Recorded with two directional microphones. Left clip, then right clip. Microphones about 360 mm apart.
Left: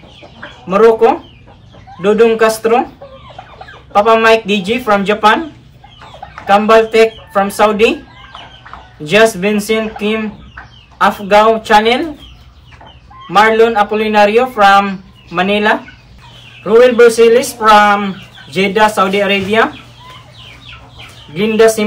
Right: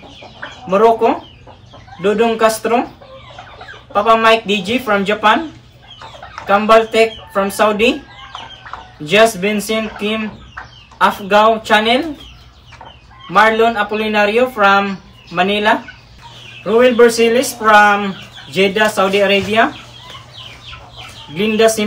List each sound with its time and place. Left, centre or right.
2.0 s speech: centre
3.9 s speech: centre
6.4 s speech: centre
9.0 s speech: centre
13.3 s speech: centre
21.4 s speech: centre